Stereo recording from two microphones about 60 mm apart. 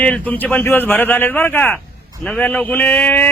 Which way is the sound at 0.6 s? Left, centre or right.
Left.